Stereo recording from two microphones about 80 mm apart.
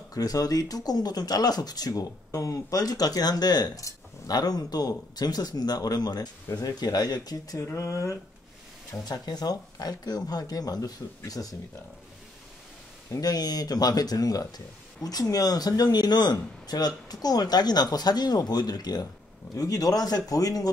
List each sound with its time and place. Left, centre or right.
0.1 s speech: left
7.6 s speech: left
9.0 s speech: left
13.2 s speech: left